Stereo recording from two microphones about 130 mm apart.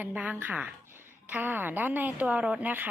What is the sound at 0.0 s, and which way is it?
A woman's voice, 10° right (ahead or behind).